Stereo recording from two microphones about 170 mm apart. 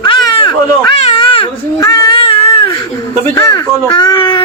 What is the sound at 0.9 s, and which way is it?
Baby cry, 35° left (ahead or behind).